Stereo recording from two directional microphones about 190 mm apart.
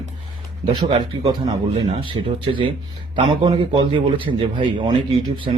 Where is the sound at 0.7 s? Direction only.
20° right (ahead or behind).